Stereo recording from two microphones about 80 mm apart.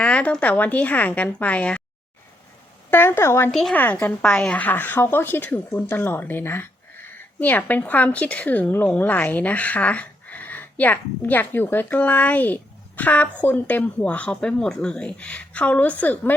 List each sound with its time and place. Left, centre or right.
0.0 s a woman's voice: centre
2.9 s speech: left
3.5 s a woman's voice: centre
3.8 s speech: left
4.2 s a woman's voice: centre